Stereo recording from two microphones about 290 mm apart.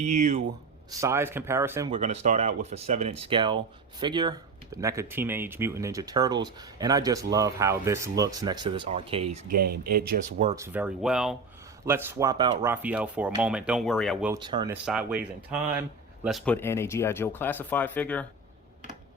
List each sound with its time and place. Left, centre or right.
0.0 s speech: right
0.9 s speech: centre
2.0 s speech: right
9.9 s speech: right
10.4 s speech: centre
14.3 s speech: centre
14.8 s speech: centre